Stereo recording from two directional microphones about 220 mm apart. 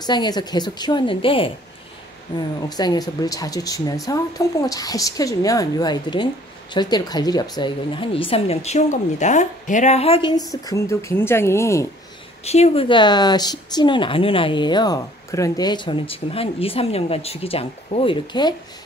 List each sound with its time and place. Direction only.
0.0 s speech: 20° left (ahead or behind)
12.4 s speech: 30° left (ahead or behind)